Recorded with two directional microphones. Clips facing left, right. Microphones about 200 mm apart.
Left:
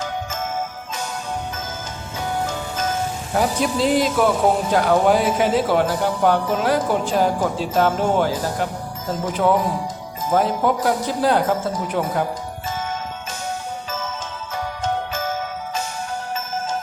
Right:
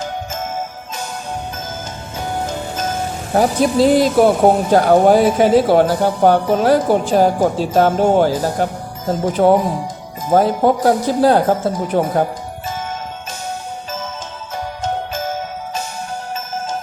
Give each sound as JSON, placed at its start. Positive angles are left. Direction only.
{"t": 3.3, "sound": "speech", "side_deg": -40}